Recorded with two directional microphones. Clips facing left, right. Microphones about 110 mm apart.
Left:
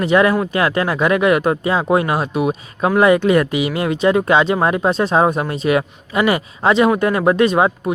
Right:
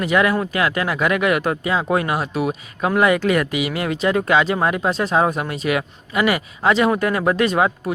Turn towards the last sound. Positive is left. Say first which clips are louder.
# left 3 dB
turn(degrees=20)  # may be behind; listen again after turning